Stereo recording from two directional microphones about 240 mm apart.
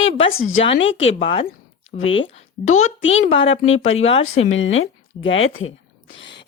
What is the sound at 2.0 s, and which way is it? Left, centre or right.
Speech, left.